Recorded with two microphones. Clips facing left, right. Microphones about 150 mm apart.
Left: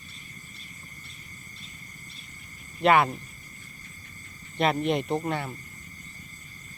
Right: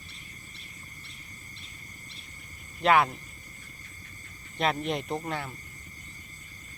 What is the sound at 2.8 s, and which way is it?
Speech, centre (ahead or behind).